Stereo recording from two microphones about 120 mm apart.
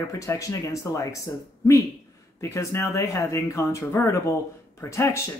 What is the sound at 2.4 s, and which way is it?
Speech, 20° left (ahead or behind).